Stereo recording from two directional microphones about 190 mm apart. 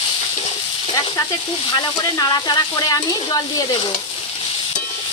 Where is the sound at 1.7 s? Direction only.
20° left (ahead or behind).